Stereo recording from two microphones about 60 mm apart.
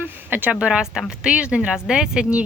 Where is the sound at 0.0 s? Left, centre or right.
Right.